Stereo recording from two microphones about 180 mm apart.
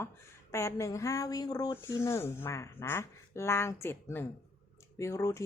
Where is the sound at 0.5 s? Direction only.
15° left (ahead or behind).